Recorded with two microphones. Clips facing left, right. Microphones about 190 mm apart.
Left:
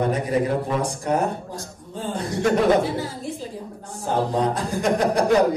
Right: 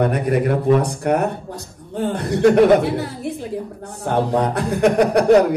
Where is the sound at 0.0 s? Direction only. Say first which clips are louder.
Right 3 dB; 65° right (ahead or behind).